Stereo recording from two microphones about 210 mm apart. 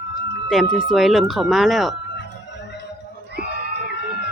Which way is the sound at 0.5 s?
Centre (ahead or behind).